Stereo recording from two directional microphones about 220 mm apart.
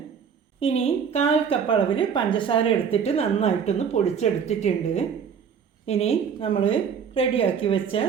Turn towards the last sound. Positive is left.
turn(degrees=25)  # may be behind; listen again after turning